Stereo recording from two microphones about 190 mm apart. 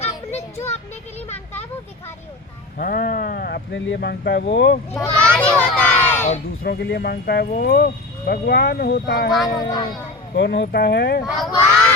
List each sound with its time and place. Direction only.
0.3 s child singing: 35° left (ahead or behind)
2.7 s speech: 50° left (ahead or behind); by 4.8 s 65° left (ahead or behind)
4.9 s a child's voice: 5° left (ahead or behind)
6.6 s speech: 60° left (ahead or behind)
9.5 s speech: 20° left (ahead or behind)
10.3 s speech: 65° left (ahead or behind)
11.2 s speech: centre (ahead or behind)